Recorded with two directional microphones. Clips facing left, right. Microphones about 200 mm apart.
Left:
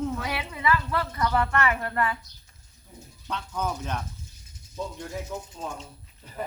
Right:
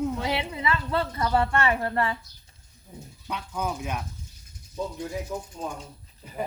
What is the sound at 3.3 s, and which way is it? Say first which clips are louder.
Speech: even; 10° right (ahead or behind).